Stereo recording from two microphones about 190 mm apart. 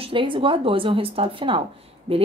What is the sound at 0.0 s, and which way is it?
Speech, 25° right (ahead or behind).